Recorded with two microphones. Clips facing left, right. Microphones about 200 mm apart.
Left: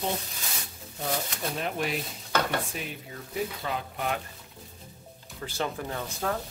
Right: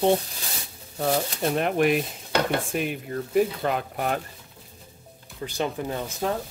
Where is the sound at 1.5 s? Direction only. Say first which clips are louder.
Right 10 dB; 60° right (ahead or behind).